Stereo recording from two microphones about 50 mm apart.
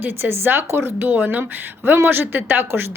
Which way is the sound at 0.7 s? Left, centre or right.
Right.